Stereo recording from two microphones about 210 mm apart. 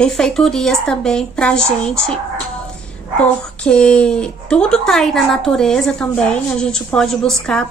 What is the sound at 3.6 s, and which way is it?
A woman's voice, 5° left (ahead or behind).